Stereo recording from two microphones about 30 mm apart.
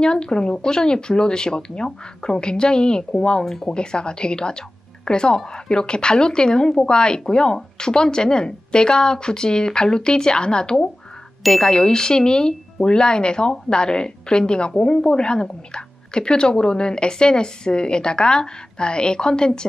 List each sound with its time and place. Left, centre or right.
0.0 s a woman's voice: left
3.4 s speech: centre
3.7 s a woman's voice: left